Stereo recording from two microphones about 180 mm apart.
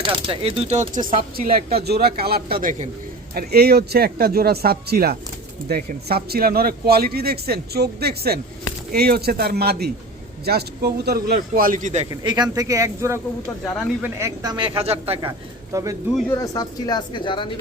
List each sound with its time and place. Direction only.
0.0 s speech: 30° right (ahead or behind)
1.5 s speech: 60° right (ahead or behind); by 2.9 s 45° right (ahead or behind)
3.3 s speech: 60° right (ahead or behind); by 12.0 s 40° right (ahead or behind)
12.2 s speech: 25° right (ahead or behind)
14.8 s speech: 35° right (ahead or behind)
15.7 s speech: 20° right (ahead or behind)
16.4 s speech: 20° left (ahead or behind)